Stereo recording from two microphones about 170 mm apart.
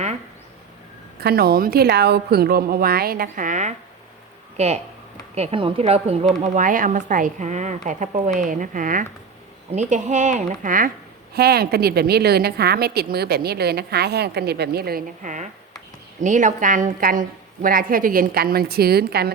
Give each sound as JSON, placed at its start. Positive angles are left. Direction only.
{"t": 1.2, "sound": "a woman's voice", "side_deg": -65}
{"t": 11.3, "sound": "a woman's voice", "side_deg": -70}